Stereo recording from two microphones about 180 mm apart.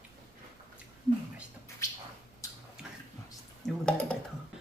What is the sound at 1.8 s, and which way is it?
Bird, 15° left (ahead or behind).